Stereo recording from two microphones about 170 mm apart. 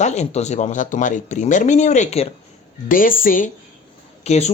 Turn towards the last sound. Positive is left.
turn(degrees=40)  # may be behind; listen again after turning